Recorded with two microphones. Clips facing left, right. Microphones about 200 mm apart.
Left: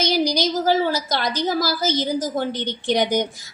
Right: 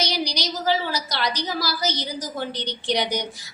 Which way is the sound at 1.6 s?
50° left (ahead or behind).